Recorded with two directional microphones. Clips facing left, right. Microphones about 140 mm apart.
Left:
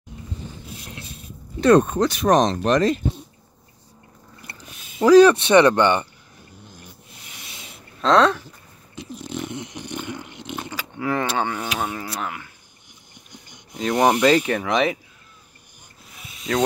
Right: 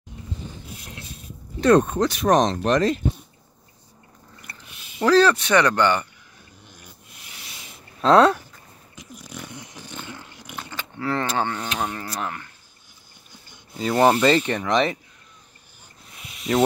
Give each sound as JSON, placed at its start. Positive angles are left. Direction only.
{"t": 1.7, "sound": "speech", "side_deg": 20}
{"t": 5.0, "sound": "speech", "side_deg": 15}
{"t": 8.0, "sound": "speech", "side_deg": -10}
{"t": 8.9, "sound": "dog", "side_deg": 25}
{"t": 10.8, "sound": "speech", "side_deg": 10}
{"t": 13.3, "sound": "a sound", "side_deg": 15}
{"t": 13.9, "sound": "speech", "side_deg": 15}
{"t": 16.3, "sound": "snake", "side_deg": -5}